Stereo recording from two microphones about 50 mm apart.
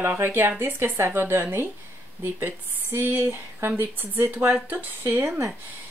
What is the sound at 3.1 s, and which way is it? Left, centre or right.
A woman's voice, right.